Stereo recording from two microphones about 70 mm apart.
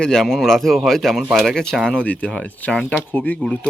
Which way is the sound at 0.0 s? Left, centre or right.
Centre.